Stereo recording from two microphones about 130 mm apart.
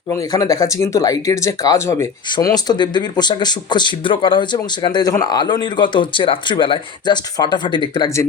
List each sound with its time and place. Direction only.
0.3 s speech: 25° left (ahead or behind)